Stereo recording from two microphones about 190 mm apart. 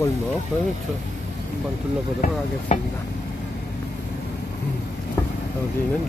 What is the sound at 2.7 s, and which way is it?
Speech, 40° left (ahead or behind).